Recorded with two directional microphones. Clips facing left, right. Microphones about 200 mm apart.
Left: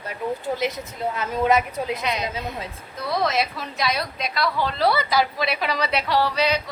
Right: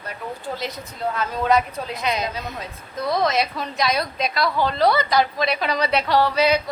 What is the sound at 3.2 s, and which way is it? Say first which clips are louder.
A woman's voice: right 1 dB; centre (ahead or behind).